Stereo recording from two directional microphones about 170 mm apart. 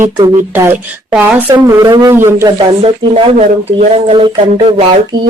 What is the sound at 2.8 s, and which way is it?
Speech, 35° right (ahead or behind).